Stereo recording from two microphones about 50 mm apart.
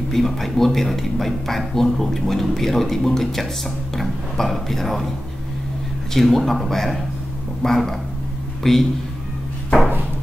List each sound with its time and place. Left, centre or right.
0.1 s a man's voice: centre
6.1 s a man's voice: centre